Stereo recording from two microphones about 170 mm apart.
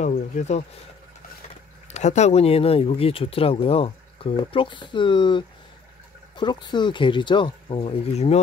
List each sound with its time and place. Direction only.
0.0 s speech: 40° left (ahead or behind)
1.9 s speech: 40° left (ahead or behind)